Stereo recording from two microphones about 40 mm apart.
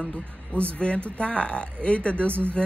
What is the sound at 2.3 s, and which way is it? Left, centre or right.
Speech, right.